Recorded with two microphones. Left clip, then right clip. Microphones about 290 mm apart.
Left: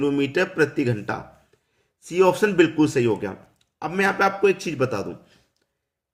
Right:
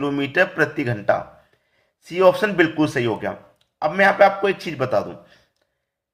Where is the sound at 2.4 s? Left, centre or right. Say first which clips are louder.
Even; centre.